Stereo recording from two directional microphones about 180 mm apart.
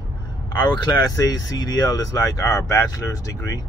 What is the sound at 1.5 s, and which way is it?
Speech, 20° left (ahead or behind).